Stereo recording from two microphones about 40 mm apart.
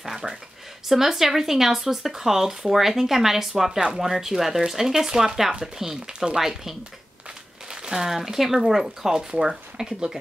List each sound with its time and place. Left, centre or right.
0.0 s speech: centre
6.0 s speech: right
6.3 s speech: centre